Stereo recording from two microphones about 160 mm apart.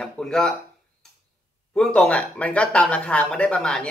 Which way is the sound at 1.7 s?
5° left (ahead or behind).